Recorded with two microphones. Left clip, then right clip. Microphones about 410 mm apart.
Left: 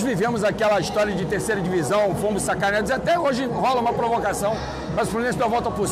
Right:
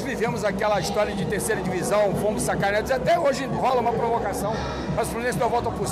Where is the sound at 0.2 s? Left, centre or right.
Left.